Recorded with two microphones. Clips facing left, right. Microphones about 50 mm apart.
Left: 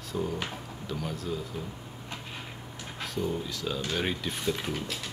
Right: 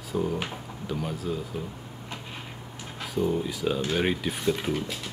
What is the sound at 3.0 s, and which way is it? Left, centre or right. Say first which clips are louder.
Speech: right 5 dB; centre.